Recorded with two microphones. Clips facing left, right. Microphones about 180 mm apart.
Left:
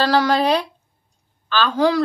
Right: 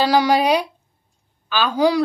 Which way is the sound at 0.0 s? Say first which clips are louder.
Right 1 dB; 15° right (ahead or behind).